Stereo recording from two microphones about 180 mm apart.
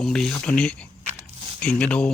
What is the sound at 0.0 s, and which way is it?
Speech, 5° left (ahead or behind).